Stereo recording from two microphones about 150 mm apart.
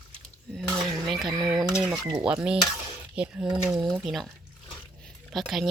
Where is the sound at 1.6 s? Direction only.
5° right (ahead or behind).